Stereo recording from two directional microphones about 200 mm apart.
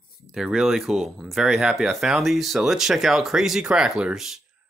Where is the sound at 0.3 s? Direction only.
Centre (ahead or behind).